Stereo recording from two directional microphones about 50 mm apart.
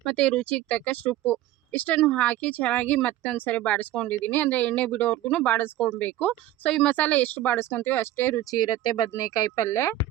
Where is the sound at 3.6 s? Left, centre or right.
Left.